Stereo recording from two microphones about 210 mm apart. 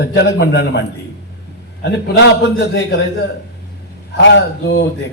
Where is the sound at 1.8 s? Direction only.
55° left (ahead or behind).